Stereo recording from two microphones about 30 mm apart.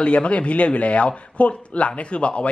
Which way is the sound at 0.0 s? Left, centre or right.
Left.